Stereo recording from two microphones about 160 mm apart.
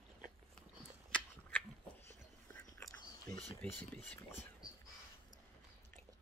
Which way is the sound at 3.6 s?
10° left (ahead or behind).